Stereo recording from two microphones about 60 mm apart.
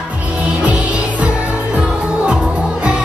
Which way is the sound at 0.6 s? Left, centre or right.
Centre.